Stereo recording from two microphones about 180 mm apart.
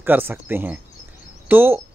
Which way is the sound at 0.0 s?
10° right (ahead or behind).